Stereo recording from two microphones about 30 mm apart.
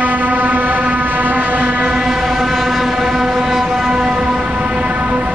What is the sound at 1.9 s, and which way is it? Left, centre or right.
Ship, centre.